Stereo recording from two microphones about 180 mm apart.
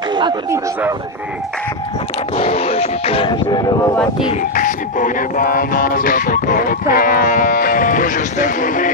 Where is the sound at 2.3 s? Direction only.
35° left (ahead or behind).